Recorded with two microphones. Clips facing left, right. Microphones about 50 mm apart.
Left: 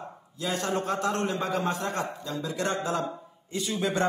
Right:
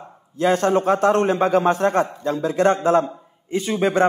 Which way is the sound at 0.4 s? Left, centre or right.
Right.